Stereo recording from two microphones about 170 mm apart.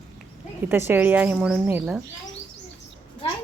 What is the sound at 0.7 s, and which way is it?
A woman's voice, 15° right (ahead or behind).